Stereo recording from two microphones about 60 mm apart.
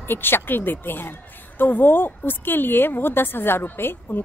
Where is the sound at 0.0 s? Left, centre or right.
Left.